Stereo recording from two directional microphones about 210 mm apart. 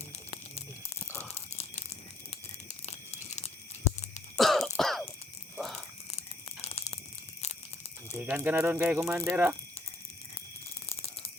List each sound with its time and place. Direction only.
1.2 s tearing: 30° left (ahead or behind)
2.8 s crumpling: 30° left (ahead or behind)
4.4 s throat clearing: centre (ahead or behind)
5.5 s a sound: centre (ahead or behind)
6.1 s a sound: 30° left (ahead or behind)
8.2 s speech: 10° right (ahead or behind)